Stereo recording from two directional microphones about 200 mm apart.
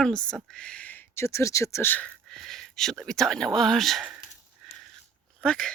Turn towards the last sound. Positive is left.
turn(degrees=5)  # may be behind; listen again after turning